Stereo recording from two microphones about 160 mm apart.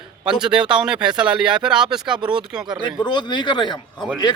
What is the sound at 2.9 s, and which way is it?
Speech, 30° left (ahead or behind).